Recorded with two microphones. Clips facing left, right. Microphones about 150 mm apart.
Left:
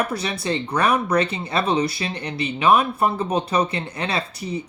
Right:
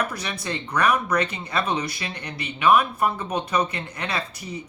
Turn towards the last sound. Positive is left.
turn(degrees=25)  # may be behind; listen again after turning